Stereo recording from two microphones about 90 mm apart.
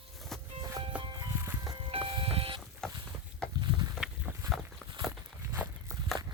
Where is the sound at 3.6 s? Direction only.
50° right (ahead or behind).